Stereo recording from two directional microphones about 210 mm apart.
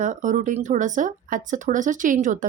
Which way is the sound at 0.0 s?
35° right (ahead or behind).